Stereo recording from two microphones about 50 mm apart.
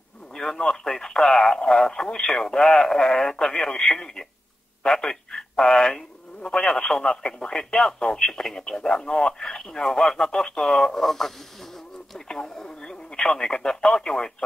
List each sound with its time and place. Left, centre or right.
0.3 s speech: centre
9.5 s radio: centre